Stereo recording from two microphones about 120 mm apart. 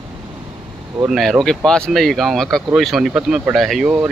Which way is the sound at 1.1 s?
Centre (ahead or behind).